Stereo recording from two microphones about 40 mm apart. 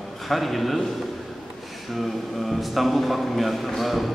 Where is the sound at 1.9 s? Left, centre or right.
Centre.